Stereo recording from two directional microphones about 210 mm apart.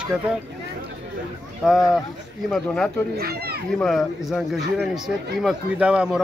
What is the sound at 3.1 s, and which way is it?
Speech, 50° right (ahead or behind).